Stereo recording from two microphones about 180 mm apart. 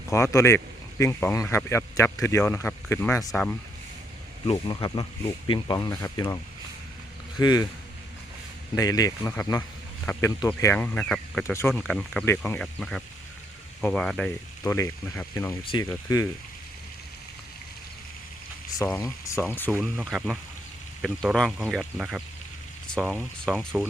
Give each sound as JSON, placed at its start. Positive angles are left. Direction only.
{"t": 0.1, "sound": "speech", "side_deg": 15}
{"t": 4.4, "sound": "speech", "side_deg": 25}
{"t": 8.7, "sound": "speech", "side_deg": 20}
{"t": 18.9, "sound": "speech", "side_deg": 15}
{"t": 19.8, "sound": "speech", "side_deg": 0}